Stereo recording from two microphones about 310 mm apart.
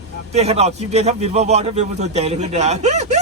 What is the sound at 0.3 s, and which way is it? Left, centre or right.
A man's voice, centre.